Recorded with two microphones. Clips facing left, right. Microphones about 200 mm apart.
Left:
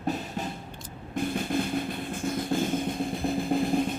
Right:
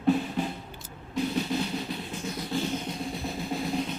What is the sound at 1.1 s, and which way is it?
Drum, 50° left (ahead or behind).